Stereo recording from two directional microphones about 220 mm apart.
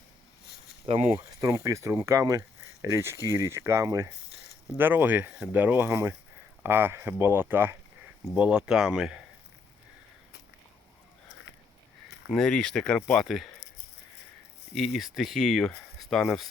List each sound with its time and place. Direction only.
0.9 s speech: 25° right (ahead or behind)
1.1 s speech: 15° right (ahead or behind)
12.3 s speech: centre (ahead or behind)
14.8 s speech: centre (ahead or behind)